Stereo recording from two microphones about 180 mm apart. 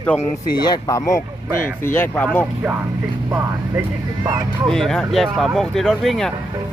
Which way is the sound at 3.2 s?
15° right (ahead or behind).